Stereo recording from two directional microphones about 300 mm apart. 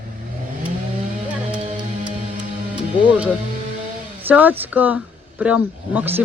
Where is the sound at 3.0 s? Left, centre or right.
Centre.